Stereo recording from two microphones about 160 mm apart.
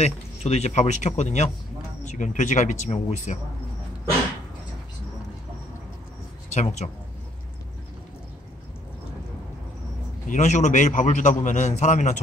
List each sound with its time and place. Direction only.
0.0 s speech: 45° left (ahead or behind)
6.5 s speech: 45° left (ahead or behind)
10.2 s speech: 50° left (ahead or behind)